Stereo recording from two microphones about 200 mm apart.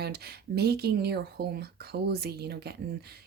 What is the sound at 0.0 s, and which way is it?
Speech, 55° right (ahead or behind).